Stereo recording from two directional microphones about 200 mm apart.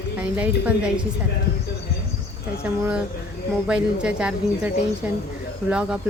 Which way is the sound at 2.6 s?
5° right (ahead or behind).